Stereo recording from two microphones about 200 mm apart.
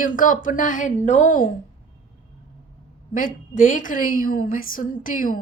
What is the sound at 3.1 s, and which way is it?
A woman's voice, 40° left (ahead or behind).